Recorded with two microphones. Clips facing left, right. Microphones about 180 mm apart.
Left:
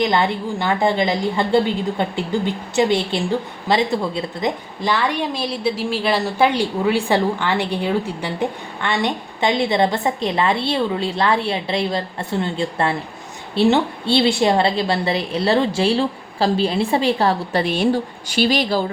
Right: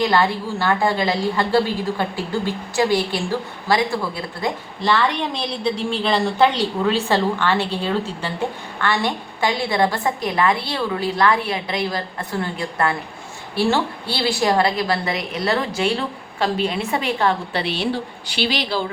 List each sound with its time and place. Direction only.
0.0 s a woman's voice: 20° left (ahead or behind); by 18.8 s 45° left (ahead or behind)